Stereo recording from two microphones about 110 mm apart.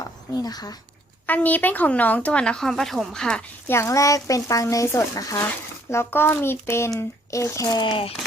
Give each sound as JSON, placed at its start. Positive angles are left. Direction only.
{"t": 0.3, "sound": "a child's voice", "side_deg": 35}
{"t": 1.3, "sound": "speech", "side_deg": 15}
{"t": 3.7, "sound": "speech", "side_deg": 25}